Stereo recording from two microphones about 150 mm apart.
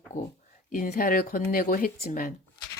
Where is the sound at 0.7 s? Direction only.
75° left (ahead or behind).